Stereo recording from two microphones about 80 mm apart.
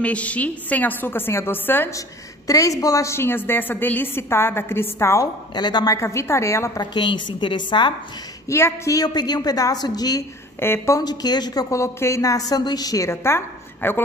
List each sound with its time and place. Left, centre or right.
0.0 s a woman's voice: centre
1.9 s a woman's voice: left
5.5 s a woman's voice: left
5.9 s a woman's voice: left
6.8 s a woman's voice: left
8.5 s a woman's voice: left
8.9 s a woman's voice: left
10.6 s a woman's voice: left
11.0 s a woman's voice: left
11.7 s a woman's voice: left